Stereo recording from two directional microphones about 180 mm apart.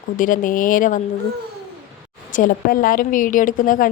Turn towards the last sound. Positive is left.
turn(degrees=50)  # may be behind; listen again after turning